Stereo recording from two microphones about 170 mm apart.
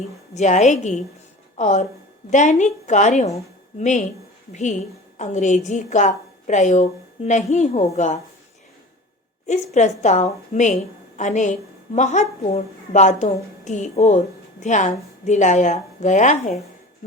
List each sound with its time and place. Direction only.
0.3 s a woman's voice: 45° left (ahead or behind)
9.5 s a woman's voice: 45° left (ahead or behind)